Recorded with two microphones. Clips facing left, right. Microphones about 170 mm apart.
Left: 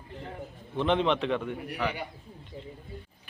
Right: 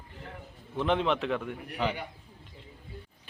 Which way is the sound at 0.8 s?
5° right (ahead or behind).